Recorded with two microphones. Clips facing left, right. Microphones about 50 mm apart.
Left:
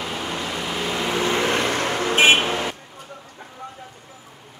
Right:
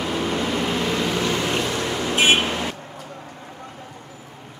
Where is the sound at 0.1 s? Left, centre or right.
Centre.